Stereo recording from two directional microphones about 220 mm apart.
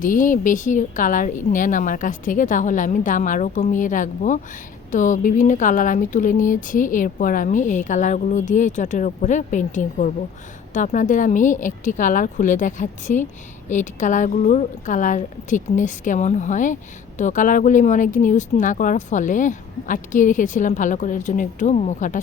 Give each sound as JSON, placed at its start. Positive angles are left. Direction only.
{"t": 0.0, "sound": "speech", "side_deg": 35}